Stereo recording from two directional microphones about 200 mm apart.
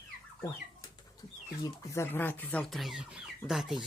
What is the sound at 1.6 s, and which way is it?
Speech, 10° left (ahead or behind).